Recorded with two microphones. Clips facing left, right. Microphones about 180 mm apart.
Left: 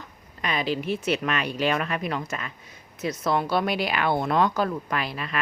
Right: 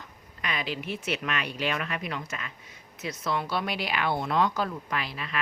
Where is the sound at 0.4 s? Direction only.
35° left (ahead or behind).